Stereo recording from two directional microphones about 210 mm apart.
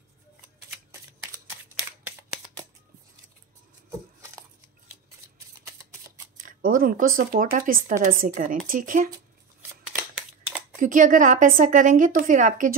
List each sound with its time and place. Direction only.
6.3 s a woman's voice: 40° right (ahead or behind)
10.8 s a woman's voice: 40° right (ahead or behind)